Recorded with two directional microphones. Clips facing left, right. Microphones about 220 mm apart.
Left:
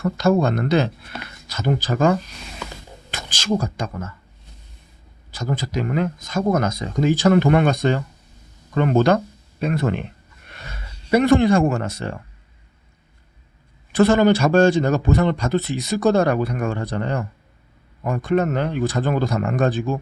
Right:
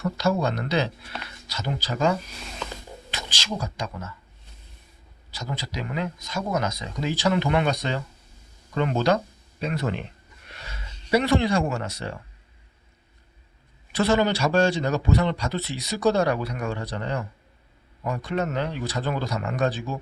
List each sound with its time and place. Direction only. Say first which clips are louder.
0.0 s a man's voice: left 6 dB; 50° left (ahead or behind)
5.3 s a man's voice: left 8 dB; 50° left (ahead or behind)
13.9 s a man's voice: left 7 dB; 50° left (ahead or behind)